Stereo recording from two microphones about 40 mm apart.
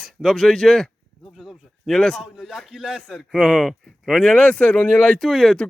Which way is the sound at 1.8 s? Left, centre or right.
Centre.